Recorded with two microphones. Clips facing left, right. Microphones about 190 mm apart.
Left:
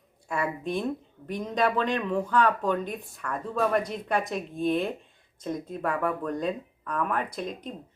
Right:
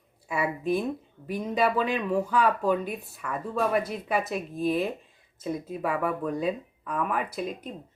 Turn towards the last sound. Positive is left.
turn(degrees=-5)  # may be behind; listen again after turning